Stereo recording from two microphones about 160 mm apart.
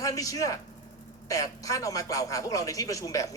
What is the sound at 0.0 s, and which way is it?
A man's voice, 20° left (ahead or behind).